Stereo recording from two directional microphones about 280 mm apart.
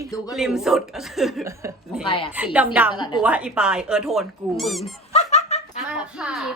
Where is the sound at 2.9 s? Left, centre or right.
Centre.